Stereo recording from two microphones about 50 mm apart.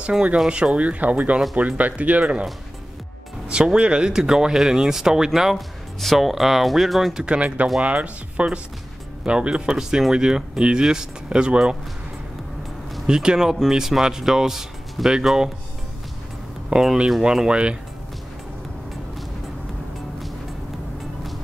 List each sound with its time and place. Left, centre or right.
0.5 s speech: right
3.4 s speech: centre
7.2 s speech: right
13.0 s speech: centre
16.7 s speech: centre